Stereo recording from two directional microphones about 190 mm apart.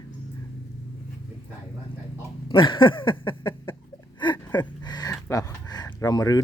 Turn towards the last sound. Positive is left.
turn(degrees=20)  # may be behind; listen again after turning